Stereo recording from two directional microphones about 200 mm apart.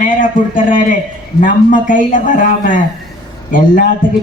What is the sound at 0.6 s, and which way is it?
Speech, 40° left (ahead or behind).